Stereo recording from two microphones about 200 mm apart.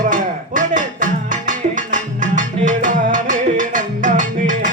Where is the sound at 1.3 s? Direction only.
40° right (ahead or behind).